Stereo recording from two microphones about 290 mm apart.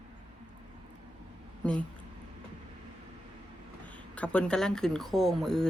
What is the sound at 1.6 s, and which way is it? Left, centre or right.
Speech, centre.